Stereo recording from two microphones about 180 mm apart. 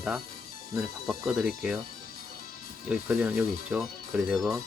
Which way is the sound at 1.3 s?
Centre (ahead or behind).